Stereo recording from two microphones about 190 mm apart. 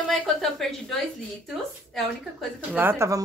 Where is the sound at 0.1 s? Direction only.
Centre (ahead or behind).